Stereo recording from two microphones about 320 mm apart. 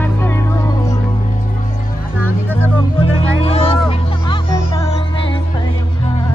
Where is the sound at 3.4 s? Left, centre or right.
Centre.